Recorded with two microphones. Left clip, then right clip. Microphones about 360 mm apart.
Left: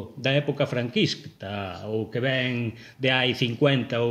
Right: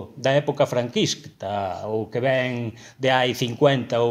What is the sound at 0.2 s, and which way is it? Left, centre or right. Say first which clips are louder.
A man's voice: right 5 dB; centre.